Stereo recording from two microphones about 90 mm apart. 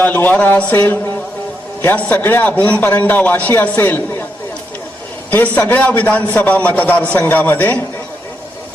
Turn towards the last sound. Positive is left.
turn(degrees=20)  # may be behind; listen again after turning